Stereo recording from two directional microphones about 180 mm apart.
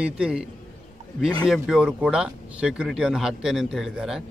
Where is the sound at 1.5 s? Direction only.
5° right (ahead or behind).